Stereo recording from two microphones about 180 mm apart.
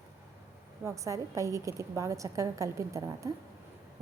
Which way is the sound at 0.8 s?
15° right (ahead or behind).